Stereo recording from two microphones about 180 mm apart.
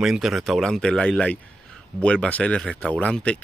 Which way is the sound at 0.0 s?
Centre (ahead or behind).